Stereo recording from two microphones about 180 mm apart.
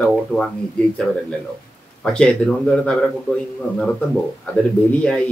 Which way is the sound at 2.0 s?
5° left (ahead or behind).